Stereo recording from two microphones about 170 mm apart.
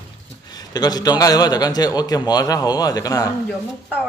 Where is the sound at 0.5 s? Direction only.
25° left (ahead or behind).